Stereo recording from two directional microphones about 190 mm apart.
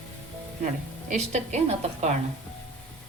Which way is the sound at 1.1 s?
35° right (ahead or behind).